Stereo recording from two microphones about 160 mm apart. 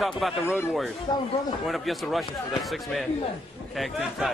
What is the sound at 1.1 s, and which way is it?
Speech, 25° left (ahead or behind).